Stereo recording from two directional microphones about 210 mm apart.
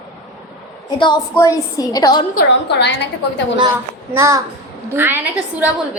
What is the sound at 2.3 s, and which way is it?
Speech, 55° left (ahead or behind).